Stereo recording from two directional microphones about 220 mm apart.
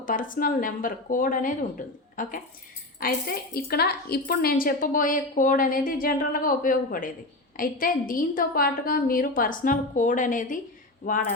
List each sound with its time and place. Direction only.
0.0 s a woman's voice: 40° left (ahead or behind)